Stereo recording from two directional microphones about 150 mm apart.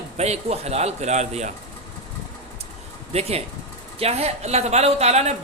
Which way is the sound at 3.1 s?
45° right (ahead or behind).